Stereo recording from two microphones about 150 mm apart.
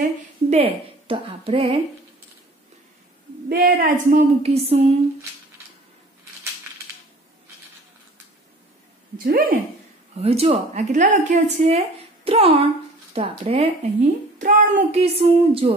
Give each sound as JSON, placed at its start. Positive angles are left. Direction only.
{"t": 0.0, "sound": "a sound", "side_deg": -45}
{"t": 3.4, "sound": "a woman's voice", "side_deg": -90}
{"t": 3.9, "sound": "speech", "side_deg": -55}
{"t": 9.2, "sound": "speech", "side_deg": -80}
{"t": 10.1, "sound": "a woman's voice", "side_deg": -45}
{"t": 14.4, "sound": "speech", "side_deg": -55}